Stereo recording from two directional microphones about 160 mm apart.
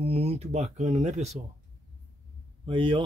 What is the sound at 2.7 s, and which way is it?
Speech, 30° right (ahead or behind).